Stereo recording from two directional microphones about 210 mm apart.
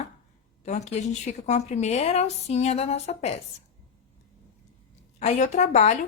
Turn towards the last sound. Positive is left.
turn(degrees=35)  # may be behind; listen again after turning